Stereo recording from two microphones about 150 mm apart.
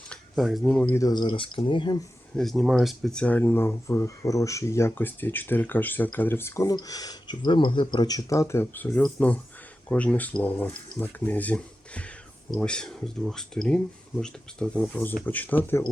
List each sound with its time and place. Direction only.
0.1 s speech: centre (ahead or behind)
0.9 s speech: 25° left (ahead or behind)
2.3 s speech: centre (ahead or behind)